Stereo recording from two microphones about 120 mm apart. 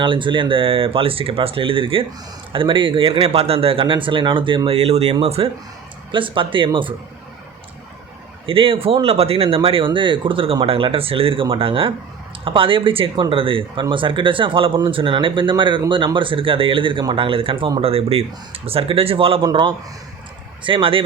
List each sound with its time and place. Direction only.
0.0 s speech: 45° right (ahead or behind)
6.1 s speech: 45° right (ahead or behind)
8.4 s speech: 50° right (ahead or behind)
20.7 s speech: 45° right (ahead or behind)